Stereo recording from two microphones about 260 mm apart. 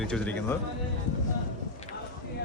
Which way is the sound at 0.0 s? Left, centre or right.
Centre.